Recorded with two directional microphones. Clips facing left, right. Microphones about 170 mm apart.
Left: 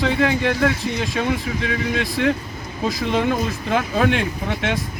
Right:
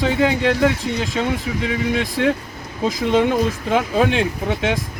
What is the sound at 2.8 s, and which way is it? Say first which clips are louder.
Speech: right 3 dB; 20° right (ahead or behind).